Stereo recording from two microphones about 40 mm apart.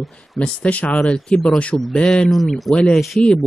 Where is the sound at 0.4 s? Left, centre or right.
Left.